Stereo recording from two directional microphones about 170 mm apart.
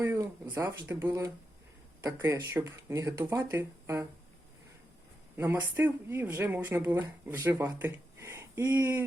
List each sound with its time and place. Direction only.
0.0 s speech: 15° right (ahead or behind)
5.4 s speech: 15° right (ahead or behind)